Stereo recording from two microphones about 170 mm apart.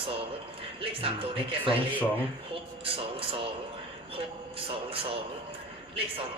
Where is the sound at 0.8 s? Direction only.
35° right (ahead or behind).